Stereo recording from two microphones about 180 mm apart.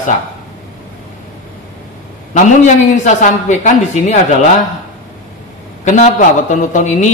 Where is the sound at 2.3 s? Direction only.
40° left (ahead or behind).